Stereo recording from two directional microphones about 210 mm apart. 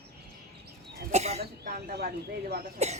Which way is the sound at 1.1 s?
30° right (ahead or behind).